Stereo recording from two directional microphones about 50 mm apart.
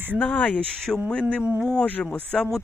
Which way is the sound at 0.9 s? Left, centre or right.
Centre.